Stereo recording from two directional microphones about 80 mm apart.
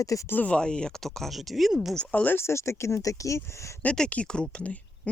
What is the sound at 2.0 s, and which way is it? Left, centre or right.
Speech, centre.